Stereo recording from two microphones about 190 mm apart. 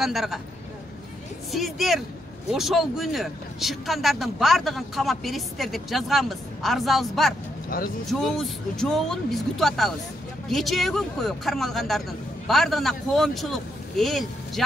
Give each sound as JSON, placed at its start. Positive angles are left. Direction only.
{"t": 0.0, "sound": "speech", "side_deg": 0}
{"t": 1.5, "sound": "speech", "side_deg": 0}
{"t": 7.7, "sound": "speech", "side_deg": 50}
{"t": 8.1, "sound": "a man's voice", "side_deg": 0}